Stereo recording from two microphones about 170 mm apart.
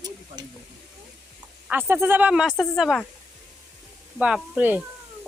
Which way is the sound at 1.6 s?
10° right (ahead or behind).